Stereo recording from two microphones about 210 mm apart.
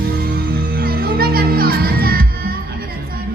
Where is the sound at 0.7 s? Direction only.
45° right (ahead or behind).